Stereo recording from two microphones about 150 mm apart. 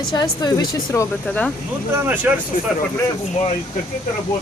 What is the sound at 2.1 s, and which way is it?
Speech, 10° right (ahead or behind).